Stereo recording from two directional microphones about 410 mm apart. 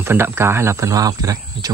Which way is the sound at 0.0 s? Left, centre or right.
Centre.